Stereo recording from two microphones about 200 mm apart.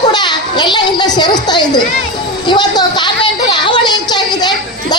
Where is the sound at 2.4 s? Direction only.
20° left (ahead or behind).